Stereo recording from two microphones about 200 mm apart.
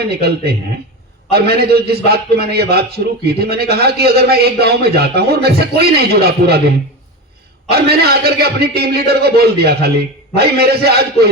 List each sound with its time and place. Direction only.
0.1 s a man's voice: 55° right (ahead or behind)